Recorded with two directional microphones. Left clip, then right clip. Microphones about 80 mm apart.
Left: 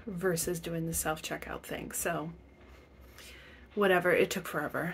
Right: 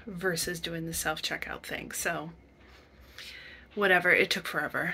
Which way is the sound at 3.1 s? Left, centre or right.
Left.